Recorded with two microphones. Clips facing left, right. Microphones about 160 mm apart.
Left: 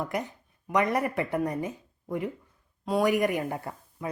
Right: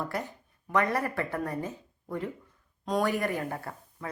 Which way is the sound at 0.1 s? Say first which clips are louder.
Left 3 dB; 15° left (ahead or behind).